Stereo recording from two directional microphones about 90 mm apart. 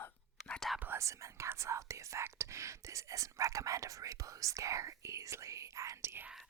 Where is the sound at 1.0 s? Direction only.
35° right (ahead or behind).